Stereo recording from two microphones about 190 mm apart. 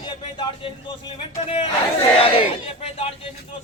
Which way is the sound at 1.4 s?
30° left (ahead or behind).